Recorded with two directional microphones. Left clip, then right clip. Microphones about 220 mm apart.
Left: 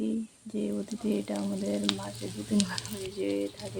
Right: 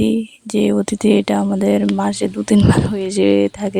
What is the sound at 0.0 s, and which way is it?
Speech, 45° right (ahead or behind).